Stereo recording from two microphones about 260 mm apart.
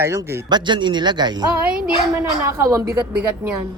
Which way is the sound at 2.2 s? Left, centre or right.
Centre.